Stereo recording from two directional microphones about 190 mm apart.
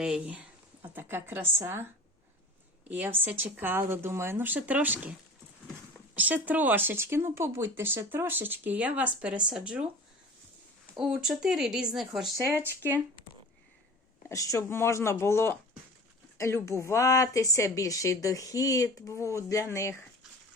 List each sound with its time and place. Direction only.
0.0 s speech: 5° right (ahead or behind)
2.9 s speech: 10° right (ahead or behind)
6.1 s speech: 10° right (ahead or behind)
10.9 s speech: 5° right (ahead or behind)
12.4 s speech: 15° right (ahead or behind)
14.3 s speech: 15° left (ahead or behind)
16.6 s speech: 15° left (ahead or behind)